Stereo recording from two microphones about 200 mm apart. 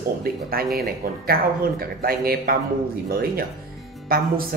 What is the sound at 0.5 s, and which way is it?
Speech, 50° right (ahead or behind).